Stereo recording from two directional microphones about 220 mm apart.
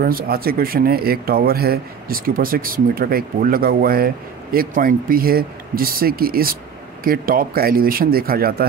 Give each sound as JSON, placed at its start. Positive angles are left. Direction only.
{"t": 0.0, "sound": "speech", "side_deg": -45}